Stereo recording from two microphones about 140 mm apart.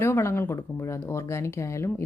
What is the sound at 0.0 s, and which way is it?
Speech, 15° left (ahead or behind).